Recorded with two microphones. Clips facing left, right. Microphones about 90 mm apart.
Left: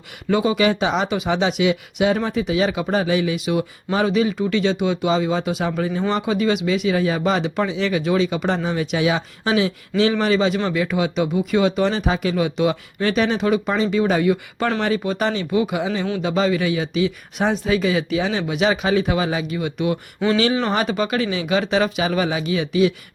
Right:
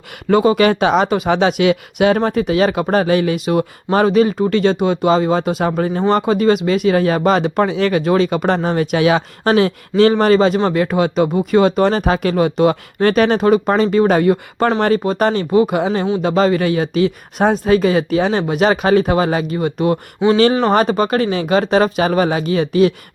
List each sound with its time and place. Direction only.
0.3 s speech: 50° right (ahead or behind)